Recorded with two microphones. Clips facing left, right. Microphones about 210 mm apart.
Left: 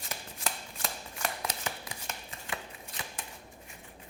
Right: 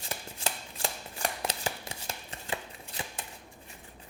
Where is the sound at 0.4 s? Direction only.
30° right (ahead or behind).